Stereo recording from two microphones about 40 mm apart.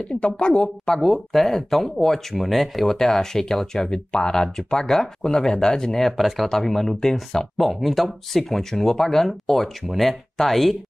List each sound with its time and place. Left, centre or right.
0.2 s speech: left
1.0 s speech: centre
6.0 s speech: centre
7.6 s speech: centre